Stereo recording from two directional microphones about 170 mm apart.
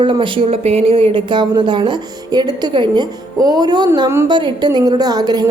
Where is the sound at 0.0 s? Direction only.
30° right (ahead or behind).